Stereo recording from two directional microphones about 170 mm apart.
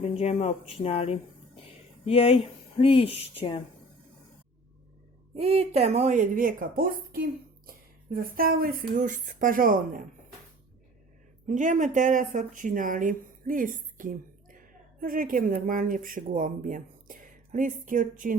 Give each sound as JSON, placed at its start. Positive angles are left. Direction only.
{"t": 0.2, "sound": "speech", "side_deg": 40}
{"t": 5.4, "sound": "speech", "side_deg": -35}
{"t": 11.4, "sound": "speech", "side_deg": -50}